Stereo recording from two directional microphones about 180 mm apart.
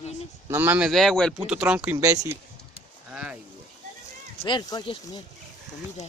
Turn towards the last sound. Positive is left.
turn(degrees=25)  # may be behind; listen again after turning